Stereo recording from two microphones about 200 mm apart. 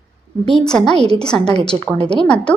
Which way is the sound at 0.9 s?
30° right (ahead or behind).